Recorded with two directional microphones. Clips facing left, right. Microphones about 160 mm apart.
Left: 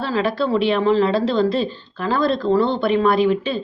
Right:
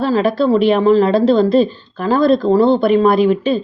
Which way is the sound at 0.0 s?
40° right (ahead or behind).